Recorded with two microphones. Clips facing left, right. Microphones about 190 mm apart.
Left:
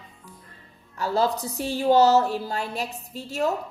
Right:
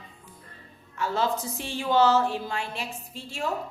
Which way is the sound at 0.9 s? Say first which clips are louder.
Left 3 dB; 35° left (ahead or behind).